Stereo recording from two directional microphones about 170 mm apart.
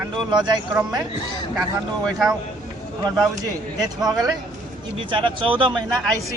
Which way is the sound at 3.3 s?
20° right (ahead or behind).